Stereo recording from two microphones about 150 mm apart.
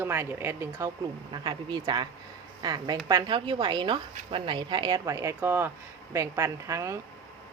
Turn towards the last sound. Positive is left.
turn(degrees=-20)  # may be behind; listen again after turning